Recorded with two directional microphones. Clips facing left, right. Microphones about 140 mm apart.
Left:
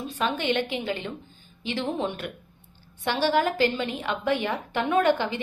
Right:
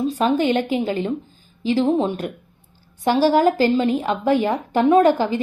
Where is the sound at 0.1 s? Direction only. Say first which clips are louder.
Right 3 dB; 35° right (ahead or behind).